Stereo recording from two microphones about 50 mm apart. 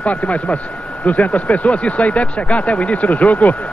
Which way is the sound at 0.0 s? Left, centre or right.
Left.